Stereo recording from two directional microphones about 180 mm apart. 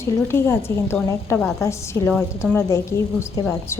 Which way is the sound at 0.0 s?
15° left (ahead or behind).